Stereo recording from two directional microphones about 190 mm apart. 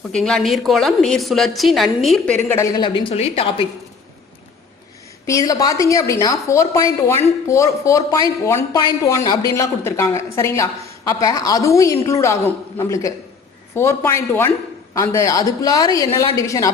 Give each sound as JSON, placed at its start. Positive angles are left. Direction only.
{"t": 0.1, "sound": "a woman's voice", "side_deg": 5}
{"t": 5.2, "sound": "a man's voice", "side_deg": 15}